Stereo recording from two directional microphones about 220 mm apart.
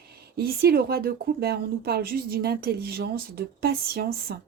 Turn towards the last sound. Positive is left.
turn(degrees=-45)  # may be behind; listen again after turning